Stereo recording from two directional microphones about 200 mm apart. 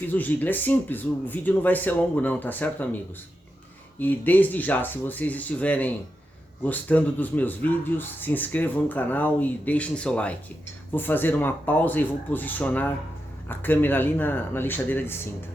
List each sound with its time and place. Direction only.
0.1 s speech: 10° left (ahead or behind)
4.0 s speech: 10° left (ahead or behind)